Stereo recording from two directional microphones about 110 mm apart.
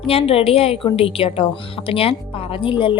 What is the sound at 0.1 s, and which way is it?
Speech, 65° left (ahead or behind).